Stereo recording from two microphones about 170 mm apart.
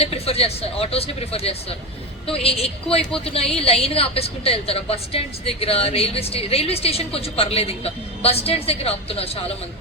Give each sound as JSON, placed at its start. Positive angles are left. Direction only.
{"t": 0.0, "sound": "a woman's voice", "side_deg": 35}